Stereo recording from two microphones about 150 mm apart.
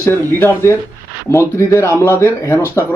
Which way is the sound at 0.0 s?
15° left (ahead or behind).